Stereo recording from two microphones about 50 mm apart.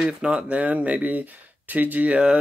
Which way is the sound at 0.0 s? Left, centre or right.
Right.